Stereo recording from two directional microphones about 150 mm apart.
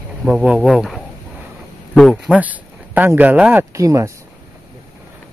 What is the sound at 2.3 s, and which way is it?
Speech, 10° right (ahead or behind).